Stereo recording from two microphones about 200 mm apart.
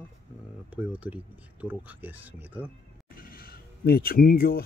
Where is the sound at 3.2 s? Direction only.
50° left (ahead or behind).